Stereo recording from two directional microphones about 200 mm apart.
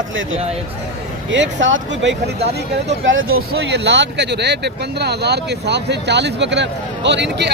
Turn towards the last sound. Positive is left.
turn(degrees=-60)  # may be behind; listen again after turning